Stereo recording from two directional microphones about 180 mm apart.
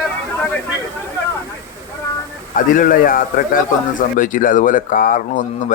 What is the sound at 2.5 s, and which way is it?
A man's voice, 50° left (ahead or behind).